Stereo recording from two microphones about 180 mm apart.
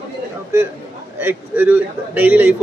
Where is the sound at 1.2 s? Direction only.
10° right (ahead or behind).